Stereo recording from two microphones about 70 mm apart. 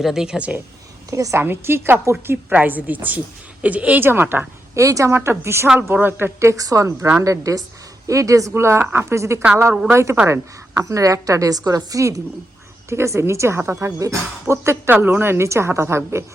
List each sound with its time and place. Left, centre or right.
0.0 s speech: centre
1.1 s a woman's voice: right
1.4 s speech: right
2.5 s a woman's voice: right
4.0 s speech: right
4.7 s a woman's voice: right
5.1 s a woman's voice: right
9.0 s a woman's voice: right
12.9 s a woman's voice: right
15.0 s speech: right